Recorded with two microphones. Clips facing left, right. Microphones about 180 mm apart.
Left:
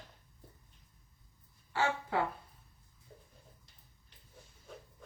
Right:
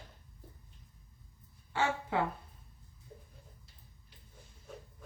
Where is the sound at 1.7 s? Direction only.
20° right (ahead or behind).